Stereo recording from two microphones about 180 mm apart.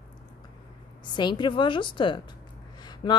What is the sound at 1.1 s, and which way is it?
A woman's voice, 25° left (ahead or behind).